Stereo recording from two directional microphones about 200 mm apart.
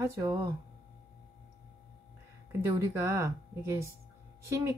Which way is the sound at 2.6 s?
15° right (ahead or behind).